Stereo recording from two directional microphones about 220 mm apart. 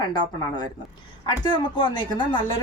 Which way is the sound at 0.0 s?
20° left (ahead or behind).